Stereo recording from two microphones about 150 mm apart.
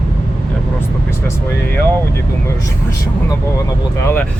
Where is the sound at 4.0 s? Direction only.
15° left (ahead or behind).